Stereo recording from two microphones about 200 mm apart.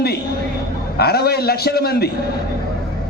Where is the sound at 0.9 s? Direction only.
50° left (ahead or behind).